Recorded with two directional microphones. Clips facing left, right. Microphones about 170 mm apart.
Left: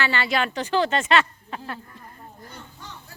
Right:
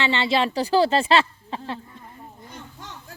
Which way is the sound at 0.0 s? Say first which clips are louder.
Right 3 dB; 25° right (ahead or behind).